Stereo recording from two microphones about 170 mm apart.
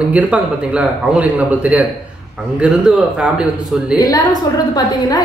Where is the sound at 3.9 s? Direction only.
20° left (ahead or behind).